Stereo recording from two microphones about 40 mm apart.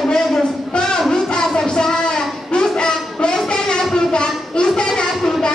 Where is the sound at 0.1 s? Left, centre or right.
Centre.